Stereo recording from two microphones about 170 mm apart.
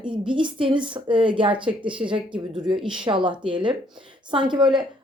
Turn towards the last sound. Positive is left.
turn(degrees=-25)  # may be behind; listen again after turning